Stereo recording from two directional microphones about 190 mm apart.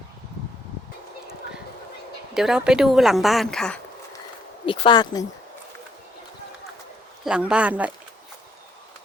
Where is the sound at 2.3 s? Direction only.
5° right (ahead or behind).